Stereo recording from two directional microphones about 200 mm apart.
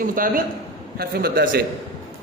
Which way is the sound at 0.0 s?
45° right (ahead or behind).